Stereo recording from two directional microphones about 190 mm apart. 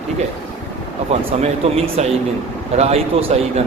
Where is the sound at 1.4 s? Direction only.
35° right (ahead or behind).